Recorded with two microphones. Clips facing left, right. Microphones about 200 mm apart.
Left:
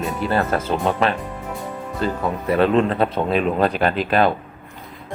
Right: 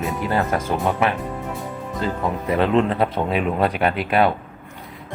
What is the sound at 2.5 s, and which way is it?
Speech, 20° right (ahead or behind).